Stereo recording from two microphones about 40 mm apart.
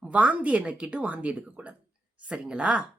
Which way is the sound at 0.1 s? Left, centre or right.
Right.